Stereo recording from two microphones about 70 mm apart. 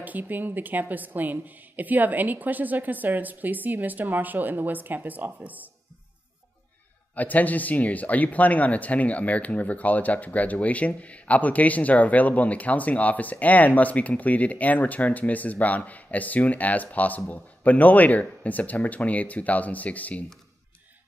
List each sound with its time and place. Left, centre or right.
0.0 s speech: right
7.2 s speech: left